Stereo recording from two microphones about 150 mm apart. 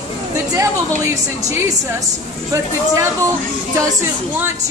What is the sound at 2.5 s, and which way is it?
Speech, 20° right (ahead or behind).